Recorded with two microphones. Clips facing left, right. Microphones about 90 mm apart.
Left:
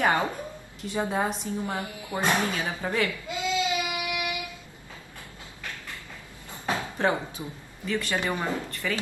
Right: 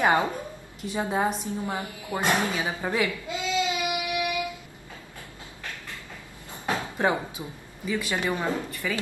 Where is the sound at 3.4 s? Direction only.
20° right (ahead or behind).